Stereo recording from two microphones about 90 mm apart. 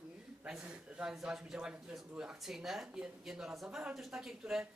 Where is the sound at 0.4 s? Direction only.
10° right (ahead or behind).